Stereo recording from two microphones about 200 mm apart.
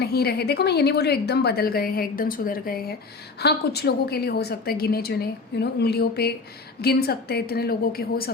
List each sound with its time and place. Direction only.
0.0 s a woman's voice: 50° left (ahead or behind)